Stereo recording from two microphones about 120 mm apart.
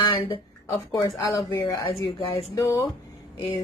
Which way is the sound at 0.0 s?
45° left (ahead or behind).